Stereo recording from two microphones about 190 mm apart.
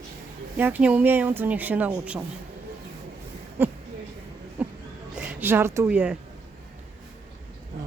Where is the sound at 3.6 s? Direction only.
10° right (ahead or behind).